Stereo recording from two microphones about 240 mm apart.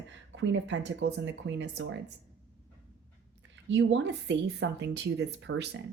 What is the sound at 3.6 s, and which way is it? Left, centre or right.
A woman's voice, right.